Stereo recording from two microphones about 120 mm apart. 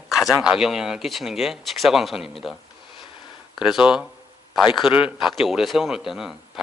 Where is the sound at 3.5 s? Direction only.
5° right (ahead or behind).